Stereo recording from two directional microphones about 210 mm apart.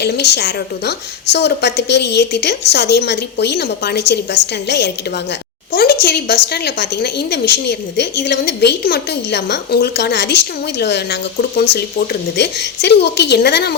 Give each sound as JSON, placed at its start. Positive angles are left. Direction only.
{"t": 0.0, "sound": "a woman's voice", "side_deg": 50}
{"t": 5.7, "sound": "a woman's voice", "side_deg": 45}